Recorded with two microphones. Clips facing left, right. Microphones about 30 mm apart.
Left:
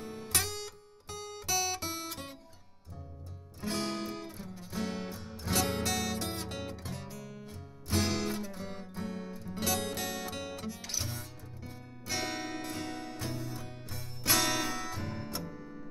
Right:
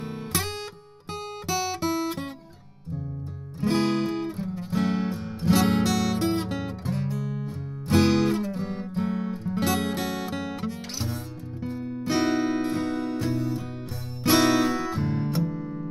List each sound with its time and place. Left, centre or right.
1.5 s guitar: right
3.6 s music: right
4.7 s music: right
5.1 s music: right